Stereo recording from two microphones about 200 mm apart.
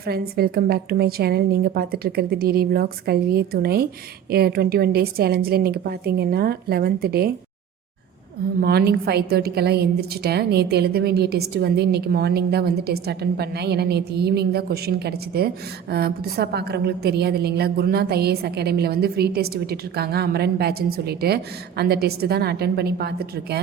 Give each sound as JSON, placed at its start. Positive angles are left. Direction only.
{"t": 0.0, "sound": "a woman's voice", "side_deg": -50}
{"t": 8.6, "sound": "a woman's voice", "side_deg": -50}